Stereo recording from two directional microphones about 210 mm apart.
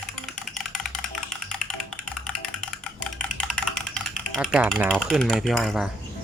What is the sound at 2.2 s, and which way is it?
Typing, 5° left (ahead or behind).